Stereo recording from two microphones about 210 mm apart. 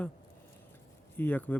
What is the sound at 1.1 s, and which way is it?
Speech, 10° left (ahead or behind).